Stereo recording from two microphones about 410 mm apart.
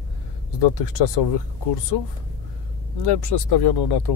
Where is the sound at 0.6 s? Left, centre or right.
Left.